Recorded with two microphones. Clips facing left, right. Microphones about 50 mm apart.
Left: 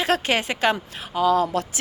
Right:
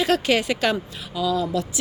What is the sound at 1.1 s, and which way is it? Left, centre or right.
Speech, left.